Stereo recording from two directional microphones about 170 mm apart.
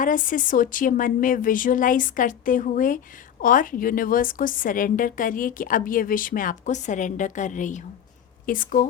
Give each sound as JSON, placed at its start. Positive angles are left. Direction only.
{"t": 0.0, "sound": "a woman's voice", "side_deg": 50}